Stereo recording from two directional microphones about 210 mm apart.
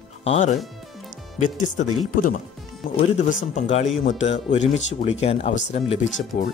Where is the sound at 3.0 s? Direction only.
35° left (ahead or behind).